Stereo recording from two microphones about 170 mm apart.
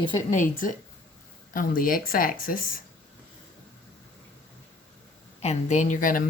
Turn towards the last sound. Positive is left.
turn(degrees=50)  # may be behind; listen again after turning